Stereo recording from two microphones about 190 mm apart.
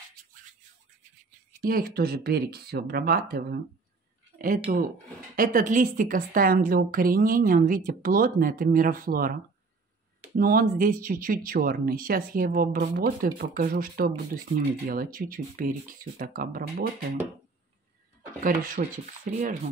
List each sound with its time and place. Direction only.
1.6 s a woman's voice: 50° right (ahead or behind)
18.4 s a woman's voice: 45° right (ahead or behind)